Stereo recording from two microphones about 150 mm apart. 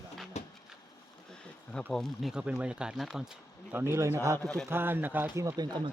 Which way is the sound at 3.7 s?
15° right (ahead or behind).